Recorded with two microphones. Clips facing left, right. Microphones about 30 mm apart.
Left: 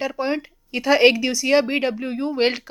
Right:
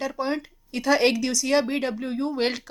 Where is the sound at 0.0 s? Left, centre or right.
Left.